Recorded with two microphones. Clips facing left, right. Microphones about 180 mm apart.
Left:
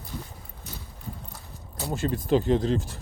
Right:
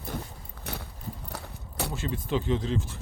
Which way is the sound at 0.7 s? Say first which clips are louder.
Right 3 dB; 65° right (ahead or behind).